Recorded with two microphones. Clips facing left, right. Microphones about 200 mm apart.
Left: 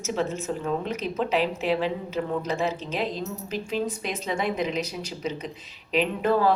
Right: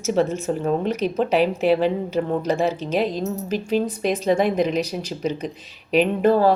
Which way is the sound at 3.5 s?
40° right (ahead or behind).